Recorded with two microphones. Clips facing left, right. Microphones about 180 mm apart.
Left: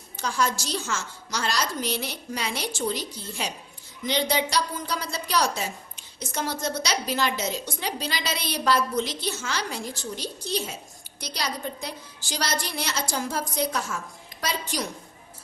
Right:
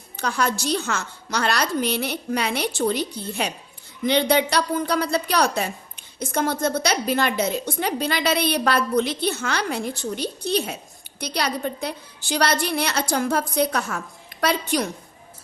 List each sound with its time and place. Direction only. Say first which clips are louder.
0.2 s a woman's voice: right 3 dB; 60° right (ahead or behind)